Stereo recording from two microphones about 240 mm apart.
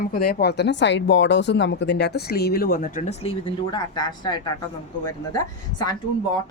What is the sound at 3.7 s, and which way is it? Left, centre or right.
Speech, centre.